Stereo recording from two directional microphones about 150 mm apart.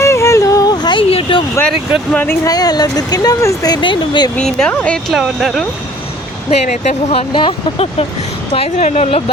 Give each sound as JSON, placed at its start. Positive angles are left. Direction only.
{"t": 0.0, "sound": "a sound", "side_deg": 20}
{"t": 2.1, "sound": "speech", "side_deg": 15}
{"t": 2.5, "sound": "speech", "side_deg": 25}
{"t": 4.4, "sound": "speech", "side_deg": 5}
{"t": 5.1, "sound": "speech", "side_deg": 0}
{"t": 6.7, "sound": "speech", "side_deg": 45}